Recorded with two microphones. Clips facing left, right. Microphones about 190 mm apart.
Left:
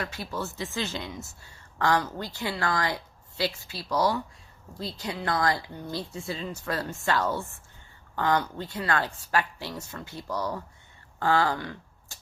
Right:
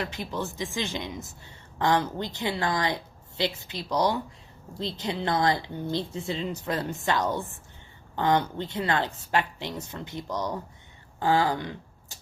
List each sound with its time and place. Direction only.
0.0 s speech: 20° right (ahead or behind)